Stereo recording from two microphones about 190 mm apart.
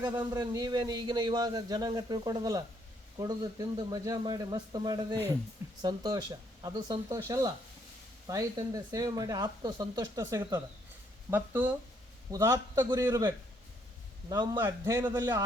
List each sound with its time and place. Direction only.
0.2 s a man's voice: 20° right (ahead or behind)